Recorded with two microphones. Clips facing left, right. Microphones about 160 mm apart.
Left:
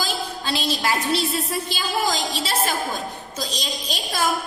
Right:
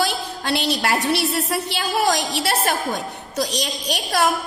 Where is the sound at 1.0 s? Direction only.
75° right (ahead or behind).